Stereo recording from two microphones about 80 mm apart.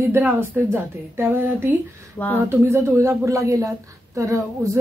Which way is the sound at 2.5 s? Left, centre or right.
Right.